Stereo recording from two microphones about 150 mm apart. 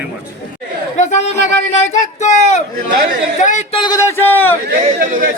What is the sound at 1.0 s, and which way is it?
Speech, 50° left (ahead or behind).